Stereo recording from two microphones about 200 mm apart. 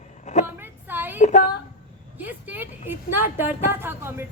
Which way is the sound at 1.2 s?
35° left (ahead or behind).